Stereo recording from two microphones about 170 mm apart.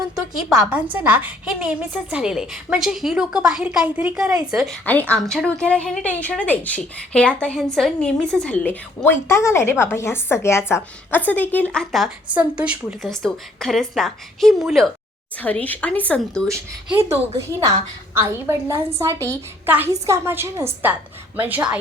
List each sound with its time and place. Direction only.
0.6 s a woman's voice: 10° right (ahead or behind); by 16.4 s 5° left (ahead or behind)
18.1 s a woman's voice: 15° right (ahead or behind)